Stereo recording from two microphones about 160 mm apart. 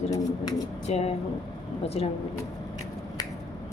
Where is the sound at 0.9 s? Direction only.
40° left (ahead or behind).